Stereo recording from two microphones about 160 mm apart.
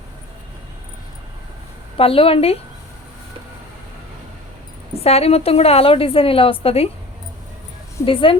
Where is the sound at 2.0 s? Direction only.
35° left (ahead or behind).